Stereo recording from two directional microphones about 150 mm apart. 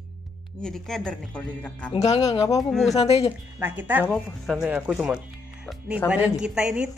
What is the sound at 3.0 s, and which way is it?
Speech, 40° left (ahead or behind).